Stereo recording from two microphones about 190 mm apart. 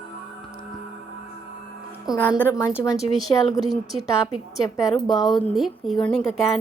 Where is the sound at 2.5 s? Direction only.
15° left (ahead or behind).